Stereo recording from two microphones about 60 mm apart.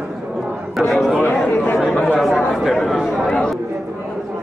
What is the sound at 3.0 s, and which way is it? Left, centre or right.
Chatter, centre.